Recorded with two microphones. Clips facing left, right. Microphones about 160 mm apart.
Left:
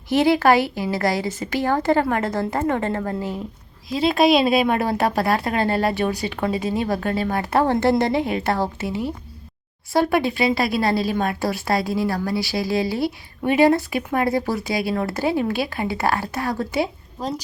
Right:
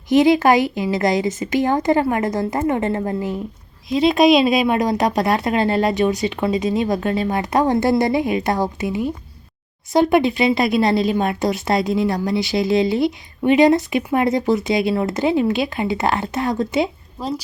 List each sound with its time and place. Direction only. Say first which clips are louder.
0.1 s speech: right 3 dB; 15° right (ahead or behind)
4.4 s speech: right 1 dB; 45° left (ahead or behind)
4.9 s a woman's voice: right 2 dB; 20° right (ahead or behind)